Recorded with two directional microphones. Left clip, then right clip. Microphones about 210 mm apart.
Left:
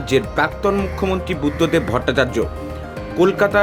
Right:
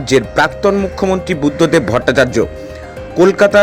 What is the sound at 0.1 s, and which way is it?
A man's voice, 25° right (ahead or behind).